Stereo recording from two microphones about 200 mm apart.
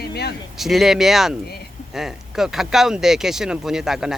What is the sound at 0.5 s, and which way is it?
Speech, centre (ahead or behind).